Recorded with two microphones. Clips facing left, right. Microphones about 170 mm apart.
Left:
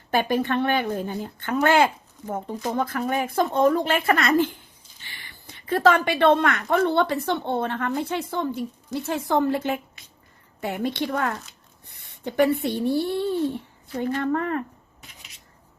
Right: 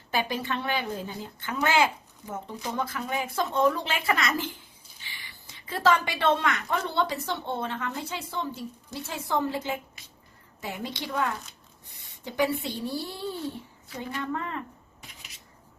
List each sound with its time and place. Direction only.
0.1 s a woman's voice: 55° left (ahead or behind)